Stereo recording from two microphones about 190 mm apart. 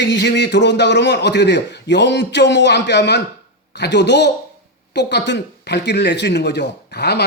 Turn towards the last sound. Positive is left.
turn(degrees=60)  # may be behind; listen again after turning